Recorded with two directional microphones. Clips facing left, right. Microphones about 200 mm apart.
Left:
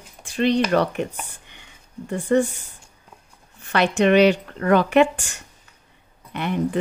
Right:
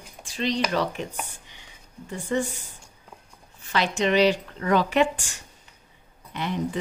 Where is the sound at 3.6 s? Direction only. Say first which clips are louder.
Left 5 dB; 60° left (ahead or behind).